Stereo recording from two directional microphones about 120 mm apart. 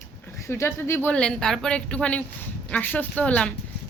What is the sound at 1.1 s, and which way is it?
A woman's voice, 5° left (ahead or behind).